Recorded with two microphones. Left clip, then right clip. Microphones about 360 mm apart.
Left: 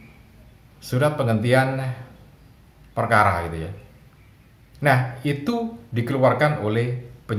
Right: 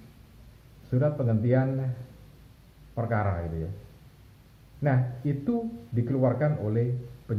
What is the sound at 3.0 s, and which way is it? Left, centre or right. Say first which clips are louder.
Speech: left 12 dB; left.